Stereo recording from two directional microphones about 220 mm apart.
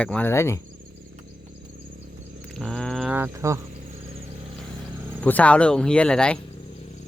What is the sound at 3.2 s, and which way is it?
Speech, 10° right (ahead or behind).